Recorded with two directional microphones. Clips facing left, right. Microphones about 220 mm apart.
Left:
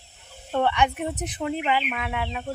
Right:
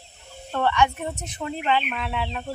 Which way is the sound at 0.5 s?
15° left (ahead or behind).